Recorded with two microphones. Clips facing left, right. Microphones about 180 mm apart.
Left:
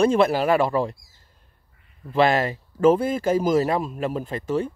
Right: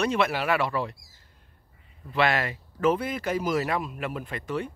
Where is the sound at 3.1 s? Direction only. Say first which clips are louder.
Left 7 dB; 45° left (ahead or behind).